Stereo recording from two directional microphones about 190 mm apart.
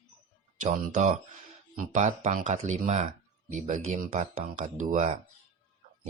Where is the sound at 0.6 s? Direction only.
40° right (ahead or behind).